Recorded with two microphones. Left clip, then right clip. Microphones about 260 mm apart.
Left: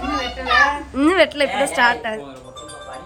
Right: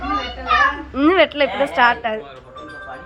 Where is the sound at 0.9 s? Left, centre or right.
Centre.